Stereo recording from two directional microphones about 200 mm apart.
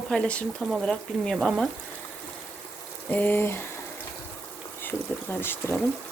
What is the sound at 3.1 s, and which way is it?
Speech, 10° left (ahead or behind).